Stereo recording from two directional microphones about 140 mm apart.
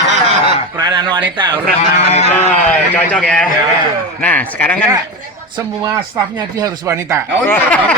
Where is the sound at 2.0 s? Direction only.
45° left (ahead or behind).